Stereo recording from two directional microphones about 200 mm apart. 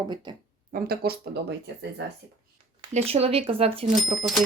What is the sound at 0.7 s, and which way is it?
Speech, 50° right (ahead or behind).